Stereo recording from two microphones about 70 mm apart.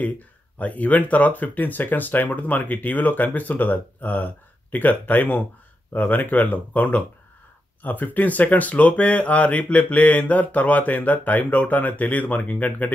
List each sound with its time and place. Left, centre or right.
0.6 s speech: left